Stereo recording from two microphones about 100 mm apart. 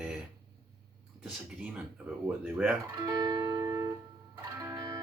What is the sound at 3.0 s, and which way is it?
Music, 40° right (ahead or behind).